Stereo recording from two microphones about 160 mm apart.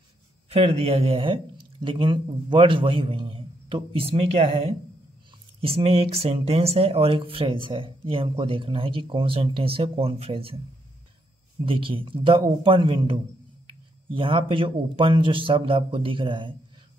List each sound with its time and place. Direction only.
0.5 s speech: 40° right (ahead or behind)
11.6 s speech: 35° right (ahead or behind)